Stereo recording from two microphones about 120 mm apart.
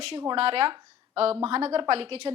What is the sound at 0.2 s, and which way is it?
A woman's voice, 50° right (ahead or behind).